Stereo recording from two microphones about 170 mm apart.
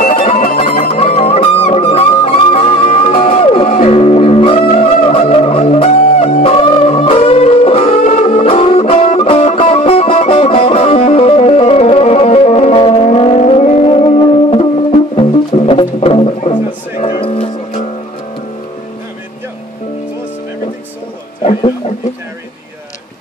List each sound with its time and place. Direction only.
0.0 s music: 50° left (ahead or behind)
0.9 s music: 35° left (ahead or behind)
21.5 s a sound: 40° left (ahead or behind)